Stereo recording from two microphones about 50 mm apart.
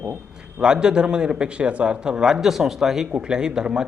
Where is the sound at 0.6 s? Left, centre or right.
Centre.